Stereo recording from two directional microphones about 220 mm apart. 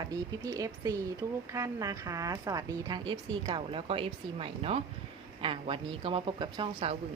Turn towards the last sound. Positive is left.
turn(degrees=-25)  # may be behind; listen again after turning